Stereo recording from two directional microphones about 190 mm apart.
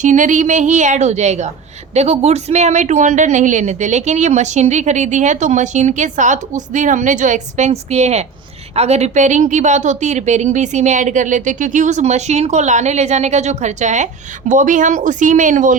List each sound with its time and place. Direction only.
0.0 s a woman's voice: 40° right (ahead or behind)